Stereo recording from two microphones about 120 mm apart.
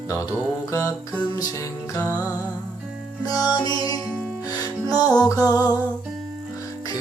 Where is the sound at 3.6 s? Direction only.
30° left (ahead or behind).